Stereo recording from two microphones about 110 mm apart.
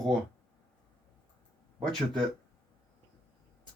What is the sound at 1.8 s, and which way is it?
Speech, 5° left (ahead or behind).